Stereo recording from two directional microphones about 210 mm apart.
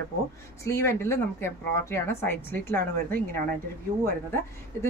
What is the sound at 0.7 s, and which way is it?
A woman's voice, 15° left (ahead or behind).